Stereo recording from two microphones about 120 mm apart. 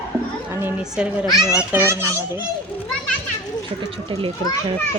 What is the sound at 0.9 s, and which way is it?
A child's voice, 10° right (ahead or behind).